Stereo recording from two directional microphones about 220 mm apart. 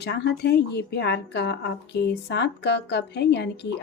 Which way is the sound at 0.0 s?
50° left (ahead or behind).